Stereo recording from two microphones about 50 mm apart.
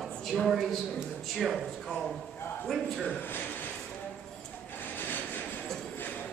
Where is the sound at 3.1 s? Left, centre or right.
Left.